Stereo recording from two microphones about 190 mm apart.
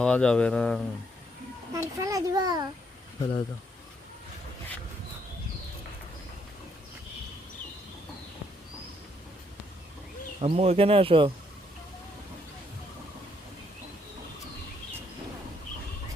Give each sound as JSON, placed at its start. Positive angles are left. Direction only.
{"t": 0.0, "sound": "speech", "side_deg": 5}
{"t": 1.7, "sound": "a child's voice", "side_deg": -15}
{"t": 3.2, "sound": "speech", "side_deg": 20}
{"t": 10.4, "sound": "speech", "side_deg": -30}